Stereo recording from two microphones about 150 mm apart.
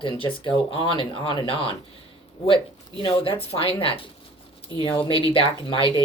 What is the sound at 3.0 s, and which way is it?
Speech, 40° left (ahead or behind).